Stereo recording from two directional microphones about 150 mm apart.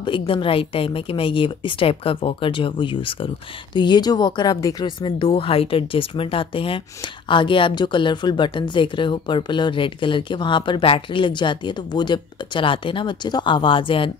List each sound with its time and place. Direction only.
0.0 s a woman's voice: 35° left (ahead or behind)